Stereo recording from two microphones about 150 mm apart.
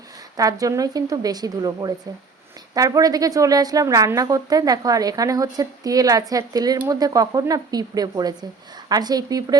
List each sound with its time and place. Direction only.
0.3 s a woman's voice: 25° right (ahead or behind)